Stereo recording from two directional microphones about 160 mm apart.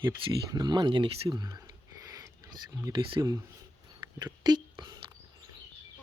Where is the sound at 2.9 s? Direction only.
30° right (ahead or behind).